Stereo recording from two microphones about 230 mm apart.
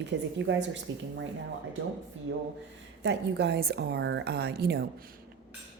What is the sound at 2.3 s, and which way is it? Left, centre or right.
Speech, right.